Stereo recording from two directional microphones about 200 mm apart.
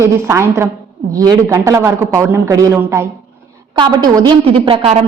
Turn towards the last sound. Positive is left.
turn(degrees=-30)  # may be behind; listen again after turning